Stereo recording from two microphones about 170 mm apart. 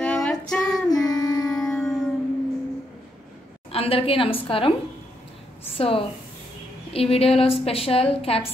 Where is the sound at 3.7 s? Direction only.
35° left (ahead or behind).